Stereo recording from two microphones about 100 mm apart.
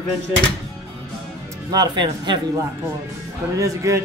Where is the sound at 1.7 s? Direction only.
45° right (ahead or behind).